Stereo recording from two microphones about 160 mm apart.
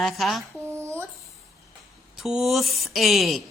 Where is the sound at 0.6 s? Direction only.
15° right (ahead or behind).